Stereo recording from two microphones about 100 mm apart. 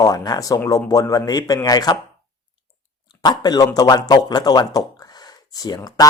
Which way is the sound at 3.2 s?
45° left (ahead or behind).